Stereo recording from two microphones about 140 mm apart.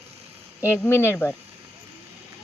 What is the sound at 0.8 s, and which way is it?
Speech, 15° left (ahead or behind).